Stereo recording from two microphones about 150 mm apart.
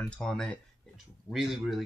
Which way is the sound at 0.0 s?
5° left (ahead or behind).